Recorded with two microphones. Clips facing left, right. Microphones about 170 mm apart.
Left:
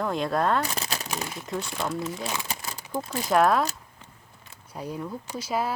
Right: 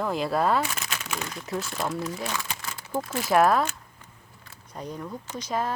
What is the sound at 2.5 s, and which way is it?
Crumpling, 35° left (ahead or behind).